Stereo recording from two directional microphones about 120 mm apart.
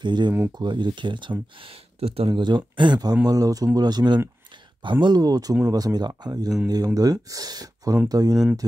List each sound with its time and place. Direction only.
0.0 s speech: 40° right (ahead or behind)
1.6 s speech: 55° right (ahead or behind); by 8.4 s 30° right (ahead or behind)